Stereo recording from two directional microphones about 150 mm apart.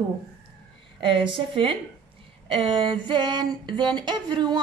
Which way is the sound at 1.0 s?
35° right (ahead or behind).